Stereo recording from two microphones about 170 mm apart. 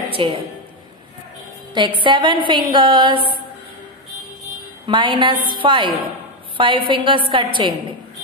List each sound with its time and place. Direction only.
0.1 s a woman's voice: 30° right (ahead or behind)
1.7 s a woman's voice: 30° right (ahead or behind)
4.8 s a woman's voice: 30° right (ahead or behind)